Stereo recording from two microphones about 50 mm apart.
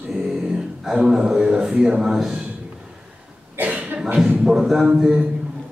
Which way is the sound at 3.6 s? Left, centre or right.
Right.